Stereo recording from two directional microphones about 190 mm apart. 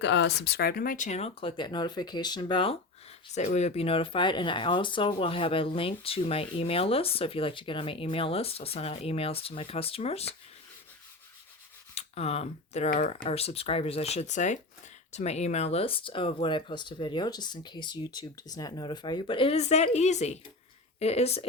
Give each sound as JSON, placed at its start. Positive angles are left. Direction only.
{"t": 0.0, "sound": "speech", "side_deg": 70}
{"t": 3.3, "sound": "speech", "side_deg": 35}
{"t": 11.9, "sound": "speech", "side_deg": 30}